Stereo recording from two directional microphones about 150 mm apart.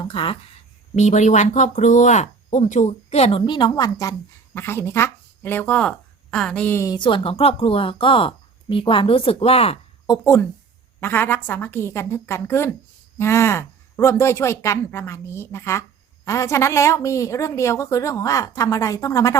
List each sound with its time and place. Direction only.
0.0 s speech: 35° left (ahead or behind)
0.9 s speech: 50° left (ahead or behind)
3.4 s a woman's voice: 30° left (ahead or behind); by 6.9 s 15° left (ahead or behind)
6.9 s a woman's voice: 35° left (ahead or behind)
10.1 s a woman's voice: 20° left (ahead or behind)